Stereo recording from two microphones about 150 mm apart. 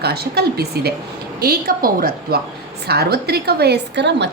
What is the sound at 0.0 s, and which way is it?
A woman's voice, 90° right.